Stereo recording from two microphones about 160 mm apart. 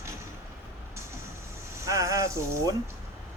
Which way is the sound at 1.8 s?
20° right (ahead or behind).